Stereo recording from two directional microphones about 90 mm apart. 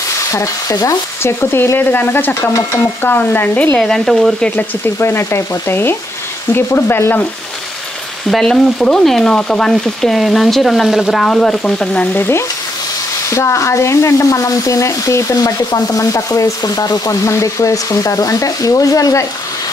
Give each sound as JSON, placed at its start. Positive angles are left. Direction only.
{"t": 0.3, "sound": "stir", "side_deg": 35}
{"t": 3.8, "sound": "frying", "side_deg": 0}
{"t": 4.6, "sound": "stir", "side_deg": 25}
{"t": 8.3, "sound": "frying", "side_deg": 5}
{"t": 13.3, "sound": "stir", "side_deg": 35}